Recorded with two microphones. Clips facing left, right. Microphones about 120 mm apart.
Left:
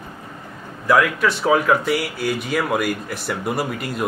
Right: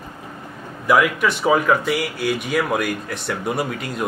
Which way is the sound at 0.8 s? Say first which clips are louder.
Even; 5° right (ahead or behind).